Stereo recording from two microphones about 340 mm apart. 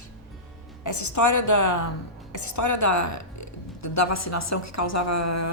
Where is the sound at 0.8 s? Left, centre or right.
Left.